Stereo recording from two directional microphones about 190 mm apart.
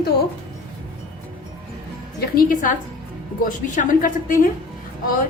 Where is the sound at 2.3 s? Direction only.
45° left (ahead or behind).